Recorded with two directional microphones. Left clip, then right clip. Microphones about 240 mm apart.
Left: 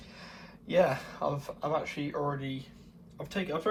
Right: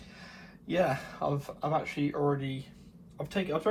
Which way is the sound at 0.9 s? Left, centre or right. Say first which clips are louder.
Even; centre.